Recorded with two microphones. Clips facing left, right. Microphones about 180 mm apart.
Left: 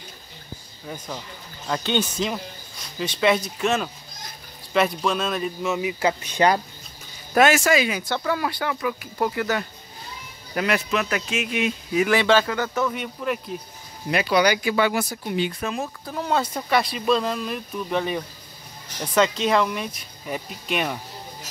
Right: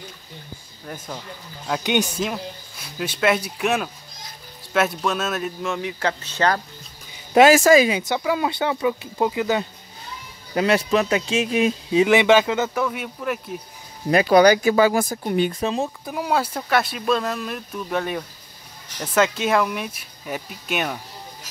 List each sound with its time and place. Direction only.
0.8 s speech: 5° right (ahead or behind); by 6.6 s 15° left (ahead or behind)
7.3 s speech: 35° right (ahead or behind)
7.9 s speech: 20° right (ahead or behind)
10.5 s speech: 30° right (ahead or behind)
12.7 s speech: 5° right (ahead or behind)
14.1 s speech: 40° right (ahead or behind)
15.6 s speech: 30° right (ahead or behind)
16.1 s speech: 10° right (ahead or behind)